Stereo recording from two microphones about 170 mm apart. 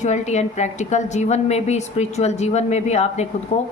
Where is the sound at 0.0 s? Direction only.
40° left (ahead or behind).